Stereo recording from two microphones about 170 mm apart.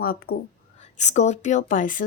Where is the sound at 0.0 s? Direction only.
60° left (ahead or behind).